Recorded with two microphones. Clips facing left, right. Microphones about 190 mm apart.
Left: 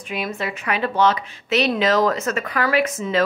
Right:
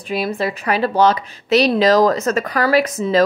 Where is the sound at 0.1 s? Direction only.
35° right (ahead or behind).